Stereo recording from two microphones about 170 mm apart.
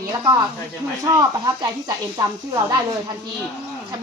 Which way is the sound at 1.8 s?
25° right (ahead or behind).